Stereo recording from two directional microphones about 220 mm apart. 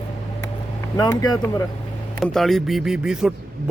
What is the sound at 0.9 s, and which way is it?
Speech, 15° left (ahead or behind).